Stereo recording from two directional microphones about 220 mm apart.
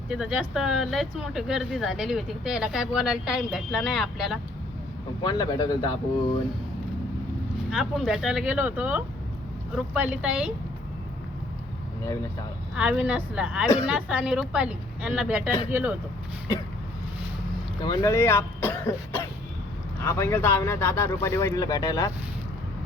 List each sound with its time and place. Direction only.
0.1 s speech: 5° right (ahead or behind)
5.2 s speech: 20° left (ahead or behind)
7.7 s speech: 5° right (ahead or behind)
12.7 s speech: 5° right (ahead or behind)
17.8 s speech: 15° left (ahead or behind)